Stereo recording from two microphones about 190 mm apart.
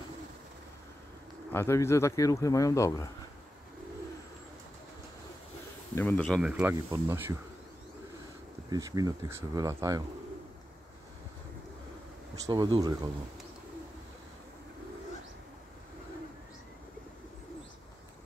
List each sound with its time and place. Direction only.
1.5 s a man's voice: 15° left (ahead or behind)
5.9 s speech: 10° left (ahead or behind); by 7.3 s 10° right (ahead or behind)
8.6 s speech: 20° right (ahead or behind)
12.4 s speech: 20° right (ahead or behind)